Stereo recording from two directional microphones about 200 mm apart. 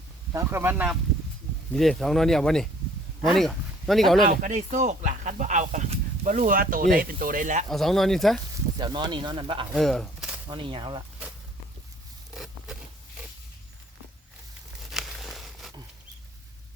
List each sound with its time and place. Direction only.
0.3 s speech: 10° right (ahead or behind)
1.7 s speech: centre (ahead or behind)
4.3 s speech: 40° right (ahead or behind)
7.7 s speech: centre (ahead or behind)
8.8 s speech: 20° right (ahead or behind)
9.7 s a sound: centre (ahead or behind)
10.5 s speech: 25° right (ahead or behind)
12.3 s zipper: centre (ahead or behind)
14.8 s a sound: centre (ahead or behind)